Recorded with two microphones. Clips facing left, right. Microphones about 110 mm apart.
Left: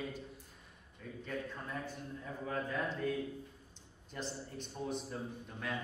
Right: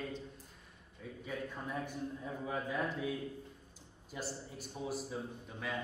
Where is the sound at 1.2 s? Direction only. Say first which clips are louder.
Right 1 dB; 10° right (ahead or behind).